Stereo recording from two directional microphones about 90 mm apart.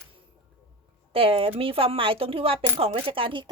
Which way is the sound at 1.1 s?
90° right.